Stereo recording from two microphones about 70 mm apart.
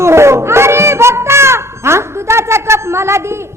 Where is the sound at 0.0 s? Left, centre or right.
Right.